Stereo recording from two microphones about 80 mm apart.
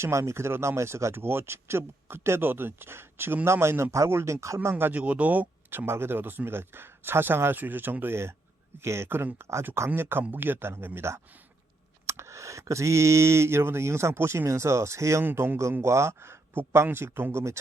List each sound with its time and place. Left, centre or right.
0.0 s speech: right
4.7 s speech: right
15.2 s speech: right